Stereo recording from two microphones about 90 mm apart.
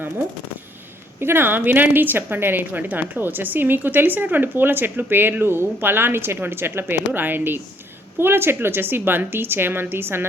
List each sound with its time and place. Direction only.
1.2 s a woman's voice: 25° right (ahead or behind)